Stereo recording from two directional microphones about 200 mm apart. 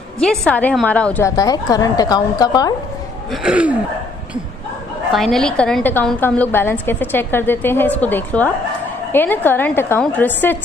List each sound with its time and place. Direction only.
0.2 s a woman's voice: 5° left (ahead or behind)
3.3 s speech: 5° right (ahead or behind)
5.1 s a woman's voice: centre (ahead or behind)